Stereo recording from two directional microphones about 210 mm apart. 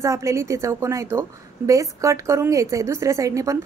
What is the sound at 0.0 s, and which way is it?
A woman's voice, 15° right (ahead or behind).